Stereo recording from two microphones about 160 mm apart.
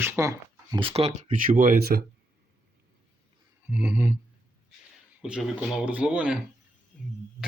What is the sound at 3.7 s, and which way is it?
Speech, 10° right (ahead or behind).